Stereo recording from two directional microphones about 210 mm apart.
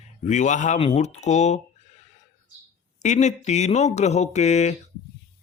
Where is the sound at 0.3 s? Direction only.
35° left (ahead or behind).